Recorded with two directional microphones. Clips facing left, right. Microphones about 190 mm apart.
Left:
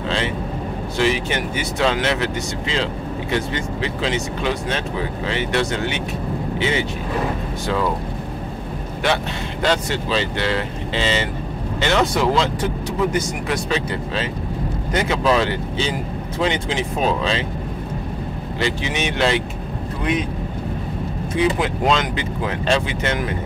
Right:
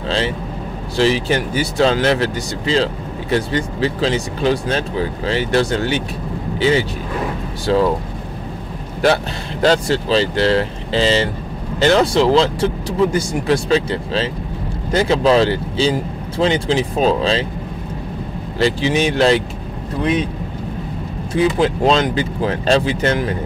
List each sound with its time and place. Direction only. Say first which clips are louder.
0.9 s speech: right 5 dB; 35° right (ahead or behind)
9.0 s speech: right 5 dB; 35° right (ahead or behind)
18.6 s speech: right 7 dB; 35° right (ahead or behind)
21.4 s speech: right 4 dB; 30° right (ahead or behind)